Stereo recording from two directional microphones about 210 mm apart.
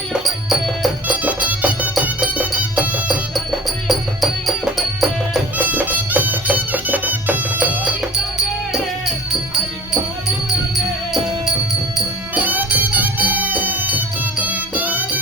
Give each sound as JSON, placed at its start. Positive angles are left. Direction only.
{"t": 0.8, "sound": "music", "side_deg": -5}
{"t": 12.3, "sound": "music", "side_deg": -10}